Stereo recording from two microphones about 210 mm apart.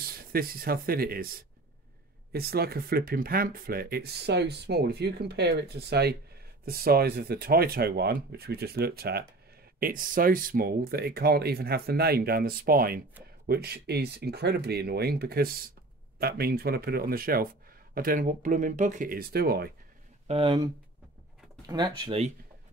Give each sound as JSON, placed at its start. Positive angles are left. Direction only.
{"t": 0.0, "sound": "speech", "side_deg": -45}
{"t": 20.2, "sound": "speech", "side_deg": -25}